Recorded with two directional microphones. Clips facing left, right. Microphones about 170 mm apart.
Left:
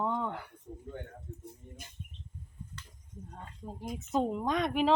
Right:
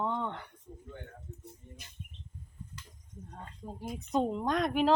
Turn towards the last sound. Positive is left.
turn(degrees=0)  # may be behind; listen again after turning